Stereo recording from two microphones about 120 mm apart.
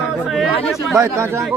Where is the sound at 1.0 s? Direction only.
20° right (ahead or behind).